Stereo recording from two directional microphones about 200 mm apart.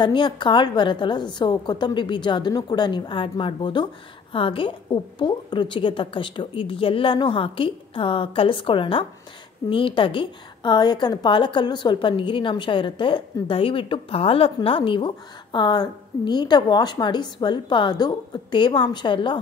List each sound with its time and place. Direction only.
0.0 s a woman's voice: 25° left (ahead or behind)